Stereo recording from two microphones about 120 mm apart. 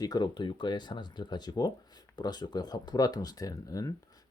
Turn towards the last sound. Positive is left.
turn(degrees=30)  # may be behind; listen again after turning